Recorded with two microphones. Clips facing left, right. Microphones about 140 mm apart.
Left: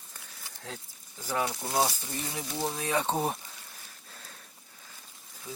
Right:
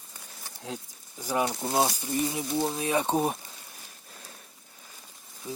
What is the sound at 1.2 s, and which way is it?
Speech, 15° right (ahead or behind).